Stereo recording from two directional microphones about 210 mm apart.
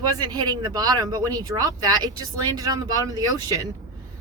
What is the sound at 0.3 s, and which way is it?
Speech, 20° right (ahead or behind).